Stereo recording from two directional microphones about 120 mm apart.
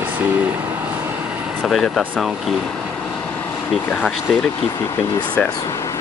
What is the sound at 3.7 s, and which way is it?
Speech, centre (ahead or behind).